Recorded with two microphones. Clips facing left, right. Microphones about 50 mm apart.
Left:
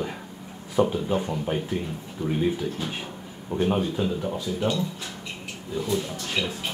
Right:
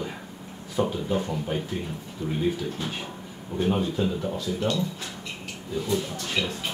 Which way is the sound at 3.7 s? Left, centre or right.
Centre.